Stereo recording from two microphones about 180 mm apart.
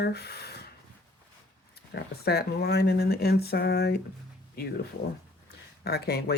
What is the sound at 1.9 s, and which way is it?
Speech, 65° left (ahead or behind).